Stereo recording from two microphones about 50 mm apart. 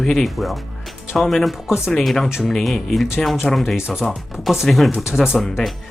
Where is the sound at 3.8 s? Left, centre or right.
Centre.